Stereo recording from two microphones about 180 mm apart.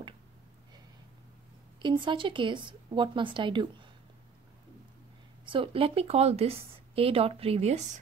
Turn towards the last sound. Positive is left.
turn(degrees=-40)  # may be behind; listen again after turning